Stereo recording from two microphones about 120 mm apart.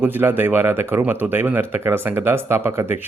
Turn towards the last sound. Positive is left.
turn(degrees=-20)  # may be behind; listen again after turning